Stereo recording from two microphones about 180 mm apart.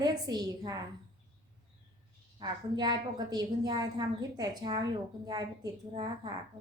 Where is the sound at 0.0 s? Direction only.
20° right (ahead or behind).